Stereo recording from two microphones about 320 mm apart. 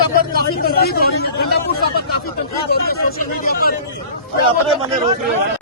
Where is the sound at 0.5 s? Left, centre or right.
Left.